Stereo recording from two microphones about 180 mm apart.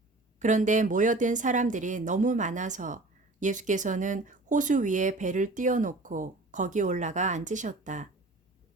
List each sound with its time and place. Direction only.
0.3 s speech: 45° right (ahead or behind)